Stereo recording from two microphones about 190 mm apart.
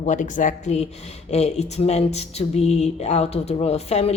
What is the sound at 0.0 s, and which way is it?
Speech, 40° left (ahead or behind).